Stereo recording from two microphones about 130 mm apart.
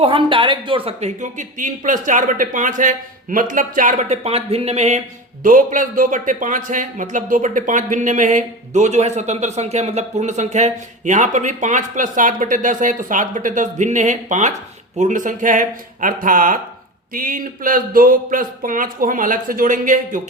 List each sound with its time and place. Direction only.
0.0 s speech: 40° right (ahead or behind); by 20.2 s 90° right